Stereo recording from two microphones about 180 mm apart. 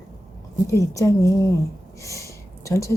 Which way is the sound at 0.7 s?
15° left (ahead or behind).